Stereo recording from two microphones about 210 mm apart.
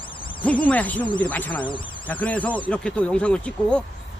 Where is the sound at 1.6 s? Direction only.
25° left (ahead or behind).